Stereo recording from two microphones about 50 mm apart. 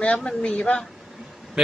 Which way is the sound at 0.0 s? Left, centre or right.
Left.